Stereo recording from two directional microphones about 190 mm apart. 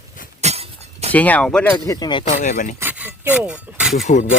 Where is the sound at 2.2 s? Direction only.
40° left (ahead or behind).